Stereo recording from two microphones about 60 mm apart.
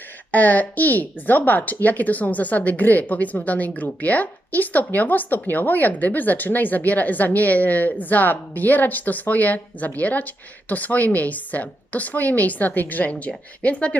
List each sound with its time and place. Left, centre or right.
0.3 s speech: left